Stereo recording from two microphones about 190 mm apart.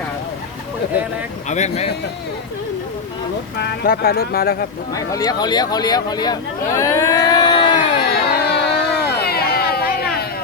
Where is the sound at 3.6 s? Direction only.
55° left (ahead or behind).